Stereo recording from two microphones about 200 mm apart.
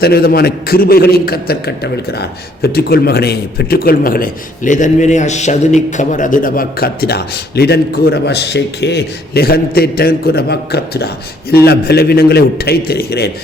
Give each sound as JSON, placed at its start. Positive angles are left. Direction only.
{"t": 0.0, "sound": "a man's voice", "side_deg": 50}